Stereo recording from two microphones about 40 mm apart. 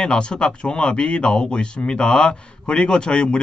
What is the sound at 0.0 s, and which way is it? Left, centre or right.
Speech, left.